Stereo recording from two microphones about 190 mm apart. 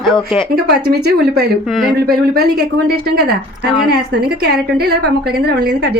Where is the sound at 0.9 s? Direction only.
55° right (ahead or behind).